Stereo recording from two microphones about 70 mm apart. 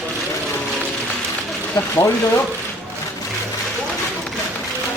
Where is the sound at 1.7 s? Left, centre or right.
Left.